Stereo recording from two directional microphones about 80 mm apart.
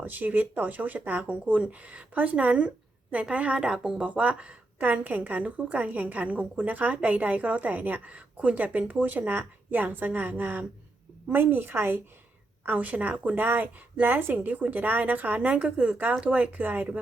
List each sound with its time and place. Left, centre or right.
0.0 s speech: right